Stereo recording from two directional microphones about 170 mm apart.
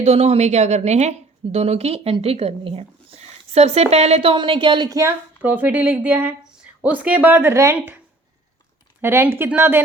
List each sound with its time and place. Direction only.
0.0 s a woman's voice: 35° right (ahead or behind); by 7.9 s 15° right (ahead or behind)
9.0 s speech: 15° right (ahead or behind)